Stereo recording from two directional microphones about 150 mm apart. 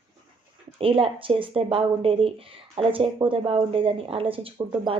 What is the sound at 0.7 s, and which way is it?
Speech, 40° right (ahead or behind).